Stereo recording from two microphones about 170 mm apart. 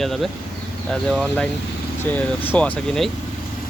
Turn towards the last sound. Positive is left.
turn(degrees=5)  # may be behind; listen again after turning